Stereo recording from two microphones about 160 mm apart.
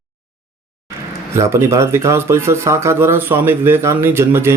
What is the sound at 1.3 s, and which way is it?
Speech, 15° right (ahead or behind).